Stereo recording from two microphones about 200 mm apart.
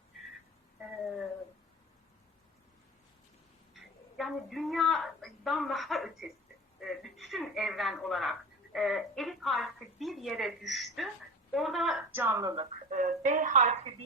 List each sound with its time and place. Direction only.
0.8 s a sound: centre (ahead or behind)
3.8 s a woman's voice: centre (ahead or behind); by 12.6 s 20° right (ahead or behind)
12.9 s speech: 40° right (ahead or behind)